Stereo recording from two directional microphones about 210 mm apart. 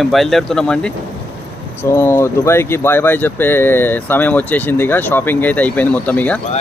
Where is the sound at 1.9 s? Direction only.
10° left (ahead or behind).